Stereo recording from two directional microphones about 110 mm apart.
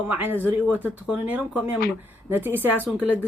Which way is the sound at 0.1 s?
15° right (ahead or behind).